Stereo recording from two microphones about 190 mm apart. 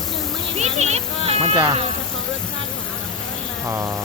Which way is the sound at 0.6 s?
35° right (ahead or behind).